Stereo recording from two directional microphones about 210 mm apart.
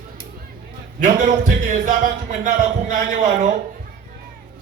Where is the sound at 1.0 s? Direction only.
40° right (ahead or behind).